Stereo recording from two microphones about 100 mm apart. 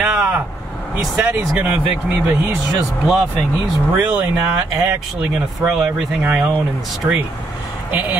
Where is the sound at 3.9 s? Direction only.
20° right (ahead or behind).